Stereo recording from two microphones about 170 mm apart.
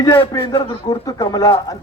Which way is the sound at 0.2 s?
30° left (ahead or behind).